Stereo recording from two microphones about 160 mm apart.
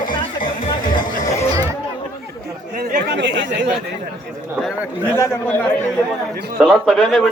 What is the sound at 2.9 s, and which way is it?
Chatter, 90° right.